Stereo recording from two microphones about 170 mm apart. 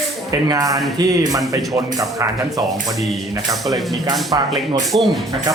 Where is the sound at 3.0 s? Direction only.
Centre (ahead or behind).